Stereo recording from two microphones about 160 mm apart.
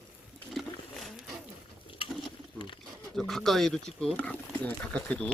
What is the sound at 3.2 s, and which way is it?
Speech, centre (ahead or behind).